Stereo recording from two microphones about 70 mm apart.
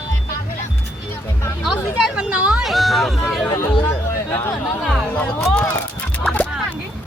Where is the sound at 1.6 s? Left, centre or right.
Centre.